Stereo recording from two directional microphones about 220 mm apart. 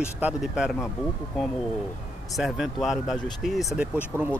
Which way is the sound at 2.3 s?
Centre (ahead or behind).